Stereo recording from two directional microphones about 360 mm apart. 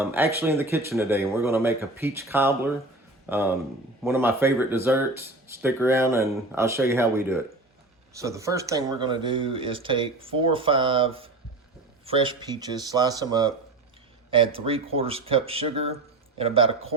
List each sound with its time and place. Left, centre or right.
0.0 s speech: centre